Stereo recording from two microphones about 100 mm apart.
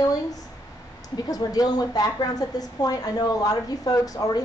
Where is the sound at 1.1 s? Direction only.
40° left (ahead or behind).